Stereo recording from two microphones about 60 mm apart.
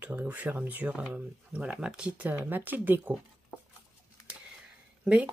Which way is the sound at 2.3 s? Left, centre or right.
Right.